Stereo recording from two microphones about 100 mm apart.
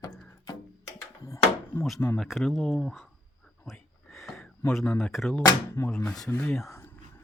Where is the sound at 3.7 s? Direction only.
5° left (ahead or behind).